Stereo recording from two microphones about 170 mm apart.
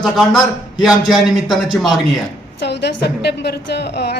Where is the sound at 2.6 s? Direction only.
85° left.